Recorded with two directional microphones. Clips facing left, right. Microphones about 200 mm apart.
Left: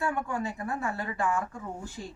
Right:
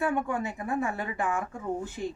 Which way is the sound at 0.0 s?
20° right (ahead or behind).